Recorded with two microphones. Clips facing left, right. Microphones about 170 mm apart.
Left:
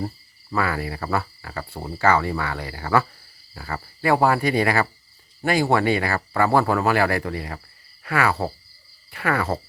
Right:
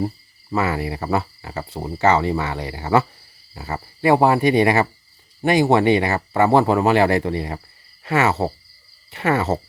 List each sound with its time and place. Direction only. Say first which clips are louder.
0.5 s speech: right 3 dB; 20° right (ahead or behind)